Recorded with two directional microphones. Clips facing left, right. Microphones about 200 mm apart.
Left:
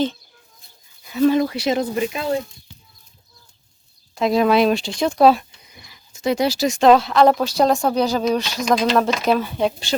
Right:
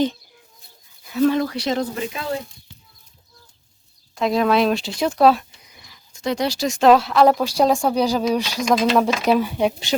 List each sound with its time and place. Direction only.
1.1 s speech: 5° left (ahead or behind)
4.1 s speech: centre (ahead or behind)